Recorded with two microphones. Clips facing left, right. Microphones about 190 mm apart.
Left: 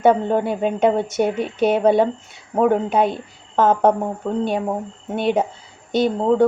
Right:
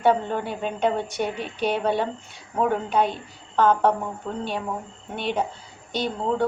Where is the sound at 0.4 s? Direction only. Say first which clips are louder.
Left 7 dB; 50° left (ahead or behind).